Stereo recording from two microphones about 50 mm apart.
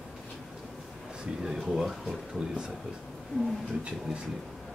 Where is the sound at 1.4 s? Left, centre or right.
Centre.